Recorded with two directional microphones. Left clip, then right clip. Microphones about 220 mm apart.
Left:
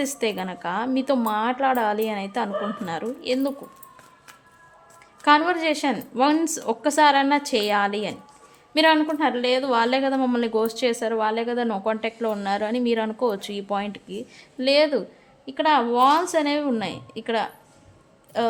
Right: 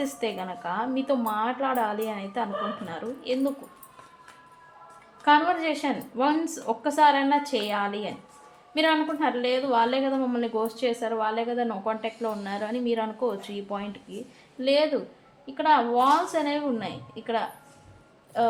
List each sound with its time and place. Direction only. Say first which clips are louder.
0.0 s a woman's voice: left 4 dB; 45° left (ahead or behind)
5.2 s a woman's voice: left 3 dB; 45° left (ahead or behind)